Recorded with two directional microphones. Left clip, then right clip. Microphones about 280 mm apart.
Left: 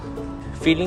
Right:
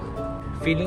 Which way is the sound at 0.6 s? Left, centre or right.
Centre.